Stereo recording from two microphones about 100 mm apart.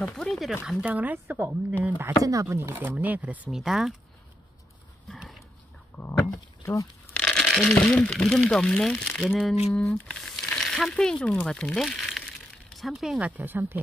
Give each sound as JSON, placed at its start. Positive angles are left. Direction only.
{"t": 0.0, "sound": "speech", "side_deg": 5}
{"t": 0.8, "sound": "speech", "side_deg": -15}
{"t": 2.2, "sound": "speech", "side_deg": -30}
{"t": 2.7, "sound": "speech", "side_deg": -20}
{"t": 3.5, "sound": "speech", "side_deg": -5}
{"t": 5.9, "sound": "a sound", "side_deg": 15}
{"t": 6.6, "sound": "speech", "side_deg": 30}
{"t": 7.2, "sound": "a sound", "side_deg": 5}
{"t": 7.7, "sound": "speech", "side_deg": 10}
{"t": 9.3, "sound": "speech", "side_deg": -5}
{"t": 9.9, "sound": "speech", "side_deg": 10}
{"t": 13.4, "sound": "speech", "side_deg": -20}